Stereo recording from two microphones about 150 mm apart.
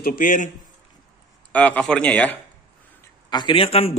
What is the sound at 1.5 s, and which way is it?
Speech, 10° left (ahead or behind).